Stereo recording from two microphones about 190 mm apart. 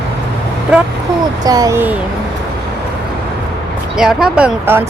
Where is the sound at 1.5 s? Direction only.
20° right (ahead or behind).